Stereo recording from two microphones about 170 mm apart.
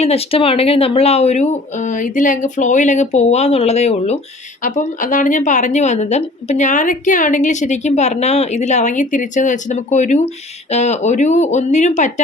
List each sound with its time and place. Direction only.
0.0 s a woman's voice: 35° left (ahead or behind)